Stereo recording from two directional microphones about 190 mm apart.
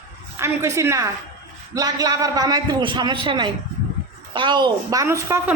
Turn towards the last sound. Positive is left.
turn(degrees=-15)  # may be behind; listen again after turning